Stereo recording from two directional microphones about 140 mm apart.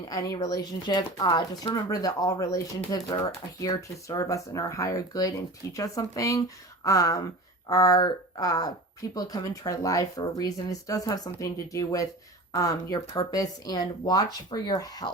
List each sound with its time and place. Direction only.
0.0 s speech: 25° left (ahead or behind)